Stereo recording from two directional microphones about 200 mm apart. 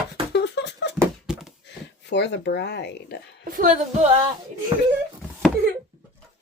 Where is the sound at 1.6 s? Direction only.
60° left (ahead or behind).